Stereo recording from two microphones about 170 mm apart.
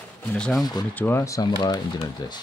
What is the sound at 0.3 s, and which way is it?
Speech, 5° left (ahead or behind).